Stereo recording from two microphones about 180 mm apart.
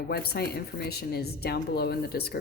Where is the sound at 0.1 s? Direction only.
60° left (ahead or behind).